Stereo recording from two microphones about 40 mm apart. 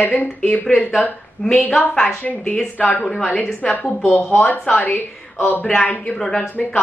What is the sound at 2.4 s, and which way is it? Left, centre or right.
Speech, left.